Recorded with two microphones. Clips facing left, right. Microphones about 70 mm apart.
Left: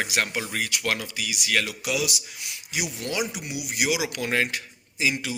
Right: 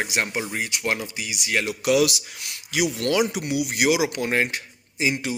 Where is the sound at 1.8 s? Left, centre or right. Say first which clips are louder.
Right 8 dB; right.